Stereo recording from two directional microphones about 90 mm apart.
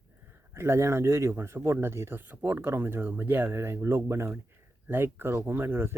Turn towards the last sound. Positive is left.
turn(degrees=-30)  # may be behind; listen again after turning